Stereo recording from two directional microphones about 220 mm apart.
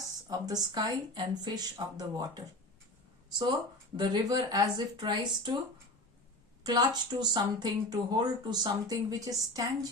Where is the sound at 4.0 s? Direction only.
20° right (ahead or behind).